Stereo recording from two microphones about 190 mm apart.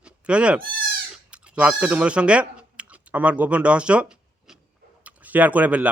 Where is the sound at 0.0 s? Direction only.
5° right (ahead or behind).